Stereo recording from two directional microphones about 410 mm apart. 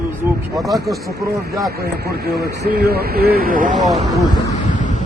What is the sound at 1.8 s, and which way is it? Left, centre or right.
Speech, right.